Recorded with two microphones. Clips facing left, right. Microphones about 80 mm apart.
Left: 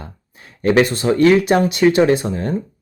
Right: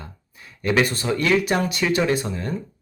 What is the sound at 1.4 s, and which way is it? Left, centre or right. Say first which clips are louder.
Speech: left 7 dB; left.